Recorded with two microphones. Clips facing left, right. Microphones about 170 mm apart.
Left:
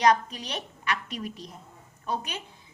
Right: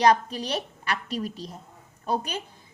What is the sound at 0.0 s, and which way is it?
A woman's voice, 30° right (ahead or behind).